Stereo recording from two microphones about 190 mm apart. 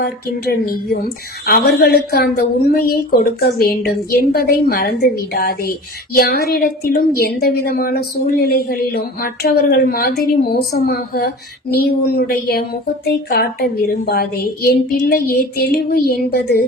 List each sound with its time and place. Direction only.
0.0 s a woman's voice: 55° left (ahead or behind)